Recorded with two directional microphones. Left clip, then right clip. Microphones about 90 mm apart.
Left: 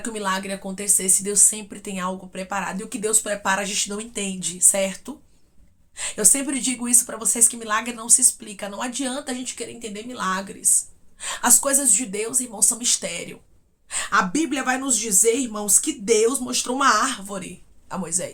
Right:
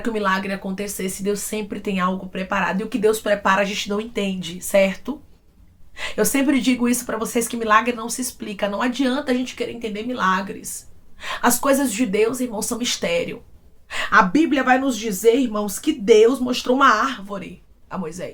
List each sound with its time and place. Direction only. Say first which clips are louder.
0.0 s speech: right 4 dB; 20° left (ahead or behind)
1.2 s speech: left 1 dB; 40° left (ahead or behind)